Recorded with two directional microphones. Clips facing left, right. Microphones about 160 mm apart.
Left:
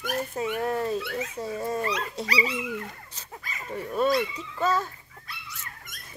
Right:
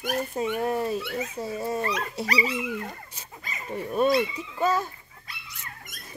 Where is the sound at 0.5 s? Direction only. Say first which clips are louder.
Even; 10° right (ahead or behind).